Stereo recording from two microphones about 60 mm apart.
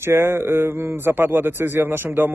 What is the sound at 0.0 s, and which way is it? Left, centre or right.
Speech, right.